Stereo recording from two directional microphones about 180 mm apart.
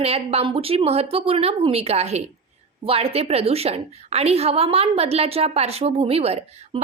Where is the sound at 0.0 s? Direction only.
35° right (ahead or behind).